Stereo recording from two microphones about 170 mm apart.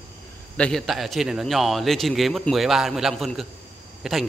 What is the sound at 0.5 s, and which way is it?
A man's voice, 5° left (ahead or behind).